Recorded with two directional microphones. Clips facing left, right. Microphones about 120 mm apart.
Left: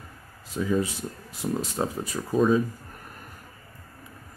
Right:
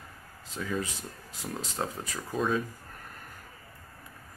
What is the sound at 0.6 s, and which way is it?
Speech, 15° left (ahead or behind).